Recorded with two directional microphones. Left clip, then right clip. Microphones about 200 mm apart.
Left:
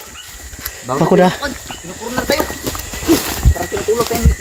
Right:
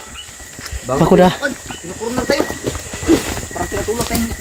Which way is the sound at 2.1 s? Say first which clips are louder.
Left 1 dB; 45° left (ahead or behind).